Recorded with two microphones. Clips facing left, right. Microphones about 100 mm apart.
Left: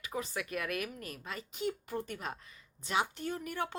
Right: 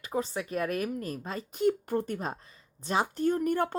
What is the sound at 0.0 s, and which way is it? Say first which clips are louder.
Speech: right 6 dB; 35° right (ahead or behind).